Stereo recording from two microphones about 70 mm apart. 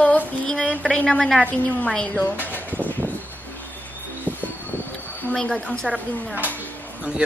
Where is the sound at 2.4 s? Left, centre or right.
Left.